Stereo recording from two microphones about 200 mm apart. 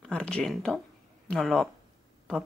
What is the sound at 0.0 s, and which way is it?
Speech, 5° left (ahead or behind).